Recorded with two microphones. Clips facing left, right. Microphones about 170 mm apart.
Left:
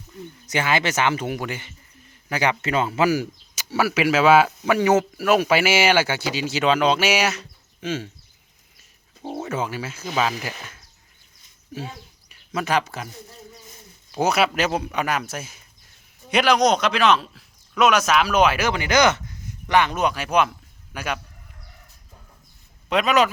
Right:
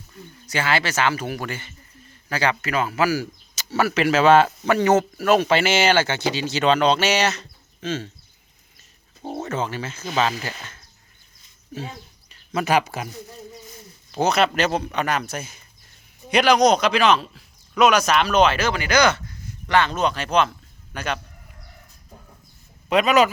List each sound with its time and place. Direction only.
0.4 s speech: 20° left (ahead or behind)
9.4 s speech: 10° left (ahead or behind)
12.5 s speech: 5° right (ahead or behind)
14.1 s a man's voice: 10° left (ahead or behind)
22.9 s speech: centre (ahead or behind)